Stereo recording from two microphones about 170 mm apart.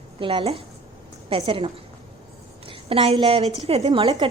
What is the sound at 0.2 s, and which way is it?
A woman's voice, 30° right (ahead or behind).